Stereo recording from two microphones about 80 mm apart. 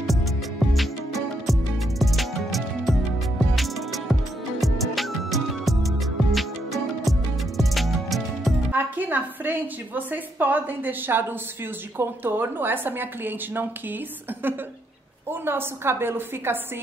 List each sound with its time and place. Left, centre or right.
0.0 s music: centre
8.7 s a woman's voice: right
15.4 s a woman's voice: right